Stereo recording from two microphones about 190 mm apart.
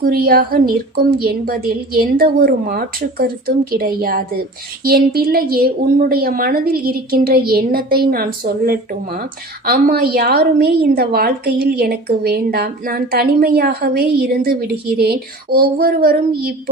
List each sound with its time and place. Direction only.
0.0 s a woman's voice: 50° right (ahead or behind)